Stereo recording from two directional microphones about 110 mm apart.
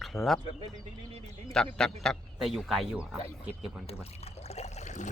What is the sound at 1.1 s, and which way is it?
Speech, 65° right (ahead or behind).